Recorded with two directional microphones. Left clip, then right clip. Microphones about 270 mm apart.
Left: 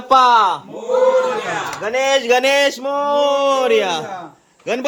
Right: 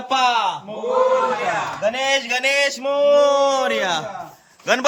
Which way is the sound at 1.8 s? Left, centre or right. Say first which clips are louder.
Left 4 dB; centre.